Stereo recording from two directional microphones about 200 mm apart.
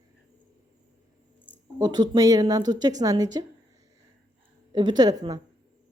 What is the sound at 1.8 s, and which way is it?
A woman's voice, 20° right (ahead or behind).